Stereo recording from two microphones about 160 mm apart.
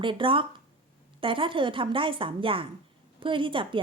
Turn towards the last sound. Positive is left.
turn(degrees=-30)  # may be behind; listen again after turning